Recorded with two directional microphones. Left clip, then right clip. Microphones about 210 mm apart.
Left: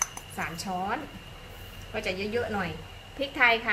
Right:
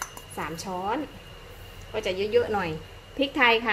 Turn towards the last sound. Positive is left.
turn(degrees=-35)  # may be behind; listen again after turning